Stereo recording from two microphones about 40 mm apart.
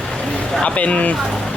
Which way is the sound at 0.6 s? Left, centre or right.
Left.